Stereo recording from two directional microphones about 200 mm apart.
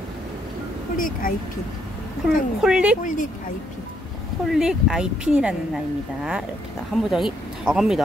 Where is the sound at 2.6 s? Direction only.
5° right (ahead or behind).